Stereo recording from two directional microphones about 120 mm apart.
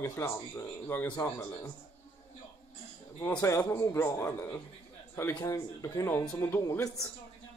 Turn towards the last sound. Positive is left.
turn(degrees=25)  # may be behind; listen again after turning